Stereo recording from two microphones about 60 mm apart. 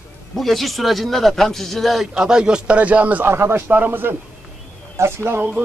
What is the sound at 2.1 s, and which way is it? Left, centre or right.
Speech, centre.